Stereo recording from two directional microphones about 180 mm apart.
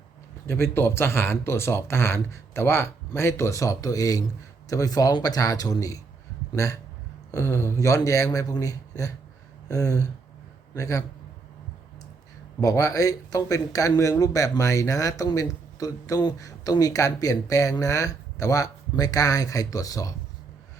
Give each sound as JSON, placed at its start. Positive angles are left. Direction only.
{"t": 0.4, "sound": "speech", "side_deg": 15}
{"t": 12.5, "sound": "speech", "side_deg": 20}